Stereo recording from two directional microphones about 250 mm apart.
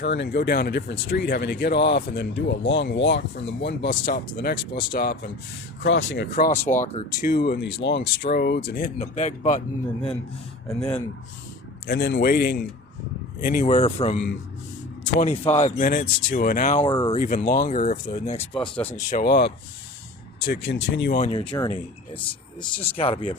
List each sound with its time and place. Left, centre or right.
0.0 s speech: left
10.7 s speech: centre
11.9 s speech: left
15.5 s speech: left
16.8 s speech: centre
17.2 s speech: left
18.8 s speech: centre
19.1 s speech: left
21.2 s speech: left